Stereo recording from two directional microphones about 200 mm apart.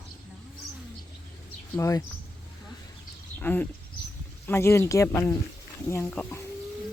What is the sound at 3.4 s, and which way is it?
Speech, 10° left (ahead or behind).